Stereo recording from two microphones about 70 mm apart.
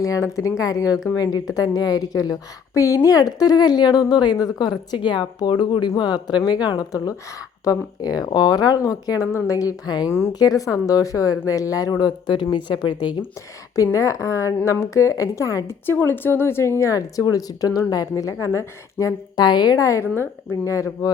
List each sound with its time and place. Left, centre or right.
0.0 s a woman's voice: left
10.3 s a woman's voice: left
12.0 s speech: left
13.7 s speech: left
15.6 s speech: left
19.4 s a woman's voice: left